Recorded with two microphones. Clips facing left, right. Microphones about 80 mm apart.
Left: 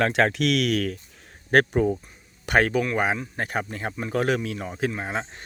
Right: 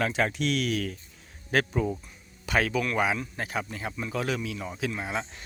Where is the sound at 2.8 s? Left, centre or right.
Left.